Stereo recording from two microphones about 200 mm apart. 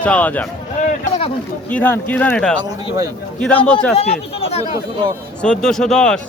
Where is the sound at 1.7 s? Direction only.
10° left (ahead or behind).